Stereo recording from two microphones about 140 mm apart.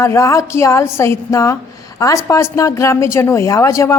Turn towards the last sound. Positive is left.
turn(degrees=20)  # may be behind; listen again after turning